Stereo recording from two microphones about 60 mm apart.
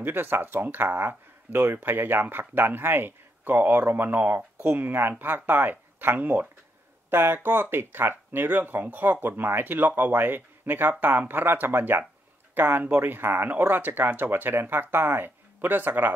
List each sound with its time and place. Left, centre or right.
0.0 s speech: right